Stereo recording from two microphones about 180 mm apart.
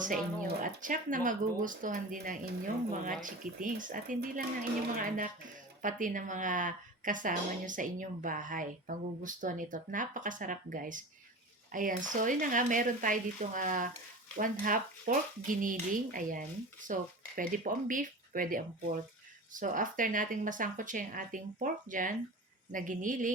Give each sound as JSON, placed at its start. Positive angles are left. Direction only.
{"t": 0.0, "sound": "speech", "side_deg": -50}